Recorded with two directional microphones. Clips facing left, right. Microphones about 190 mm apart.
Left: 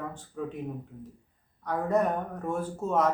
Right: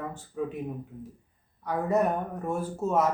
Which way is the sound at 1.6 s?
10° right (ahead or behind).